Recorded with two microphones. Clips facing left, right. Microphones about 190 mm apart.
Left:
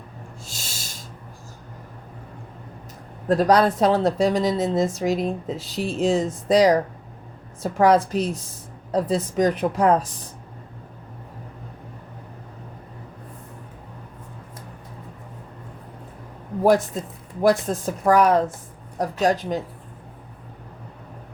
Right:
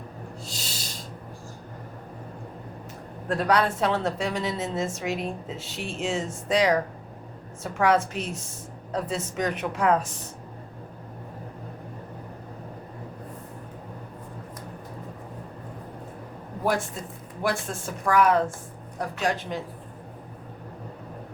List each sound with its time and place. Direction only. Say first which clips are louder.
0.4 s snort: right 2 dB; 45° left (ahead or behind)
3.2 s speech: left 6 dB; 40° left (ahead or behind)
16.9 s speech: left 7 dB; 40° left (ahead or behind)